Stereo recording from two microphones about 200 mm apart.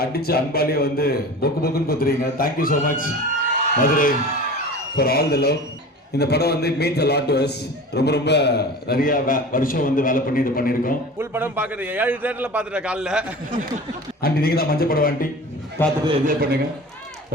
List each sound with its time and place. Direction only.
0.0 s a man's voice: 50° left (ahead or behind)
11.2 s a man's voice: 10° right (ahead or behind)
14.2 s a man's voice: 50° left (ahead or behind)
15.8 s a man's voice: 10° left (ahead or behind)
16.2 s a man's voice: 45° right (ahead or behind)